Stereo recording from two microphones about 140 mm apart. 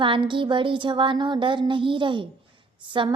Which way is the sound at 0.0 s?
35° right (ahead or behind).